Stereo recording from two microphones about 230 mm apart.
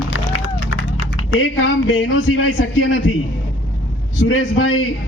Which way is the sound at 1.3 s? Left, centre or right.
Left.